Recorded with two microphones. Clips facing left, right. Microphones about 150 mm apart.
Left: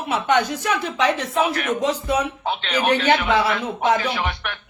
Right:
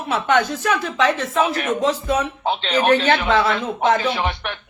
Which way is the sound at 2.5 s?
25° right (ahead or behind).